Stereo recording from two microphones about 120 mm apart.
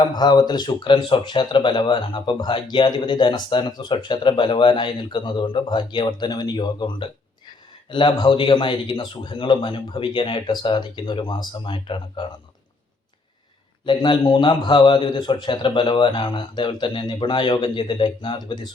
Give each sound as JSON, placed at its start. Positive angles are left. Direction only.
{"t": 0.0, "sound": "a man's voice", "side_deg": 35}
{"t": 13.8, "sound": "a man's voice", "side_deg": 45}